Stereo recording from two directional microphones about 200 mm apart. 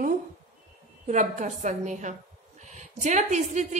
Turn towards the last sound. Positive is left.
turn(degrees=-35)  # may be behind; listen again after turning